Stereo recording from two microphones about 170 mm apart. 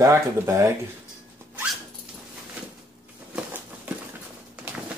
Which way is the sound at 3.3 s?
10° right (ahead or behind).